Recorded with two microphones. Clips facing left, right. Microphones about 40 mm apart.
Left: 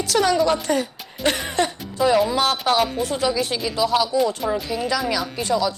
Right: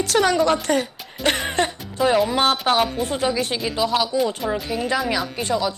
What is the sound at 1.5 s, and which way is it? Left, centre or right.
Music, right.